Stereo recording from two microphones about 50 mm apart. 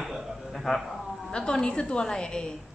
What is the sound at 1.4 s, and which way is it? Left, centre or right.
A woman's voice, centre.